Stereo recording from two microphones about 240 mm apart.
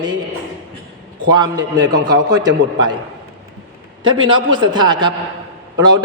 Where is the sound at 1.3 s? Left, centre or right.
Centre.